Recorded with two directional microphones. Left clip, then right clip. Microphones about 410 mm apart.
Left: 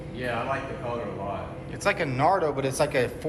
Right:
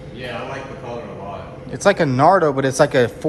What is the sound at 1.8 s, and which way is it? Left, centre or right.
A man's voice, centre.